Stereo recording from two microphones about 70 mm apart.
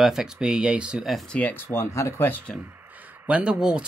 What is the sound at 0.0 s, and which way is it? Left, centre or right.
Speech, centre.